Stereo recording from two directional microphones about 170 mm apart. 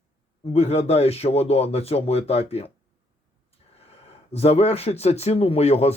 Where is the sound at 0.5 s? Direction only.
40° left (ahead or behind).